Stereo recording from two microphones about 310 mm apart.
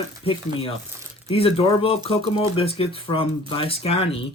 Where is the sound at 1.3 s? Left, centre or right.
Centre.